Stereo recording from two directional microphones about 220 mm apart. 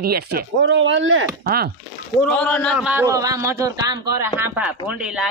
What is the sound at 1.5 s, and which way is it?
Speech, 45° right (ahead or behind).